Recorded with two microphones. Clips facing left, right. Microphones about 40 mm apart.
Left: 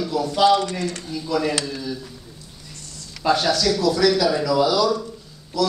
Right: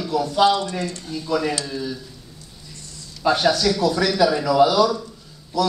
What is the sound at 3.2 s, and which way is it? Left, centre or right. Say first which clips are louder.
Speech: right 1 dB; centre.